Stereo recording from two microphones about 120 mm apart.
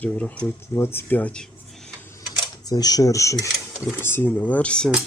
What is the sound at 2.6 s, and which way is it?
Speech, 35° left (ahead or behind).